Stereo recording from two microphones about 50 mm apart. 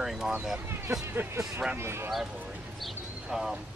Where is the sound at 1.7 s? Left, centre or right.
Right.